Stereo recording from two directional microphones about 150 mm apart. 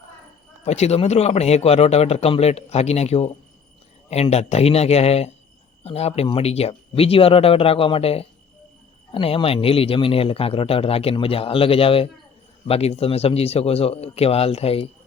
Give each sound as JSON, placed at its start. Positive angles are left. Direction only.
{"t": 0.6, "sound": "a man's voice", "side_deg": 45}